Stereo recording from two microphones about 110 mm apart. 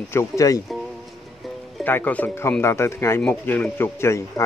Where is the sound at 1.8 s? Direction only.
15° left (ahead or behind).